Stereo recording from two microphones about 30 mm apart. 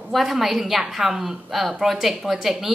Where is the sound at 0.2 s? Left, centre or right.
Centre.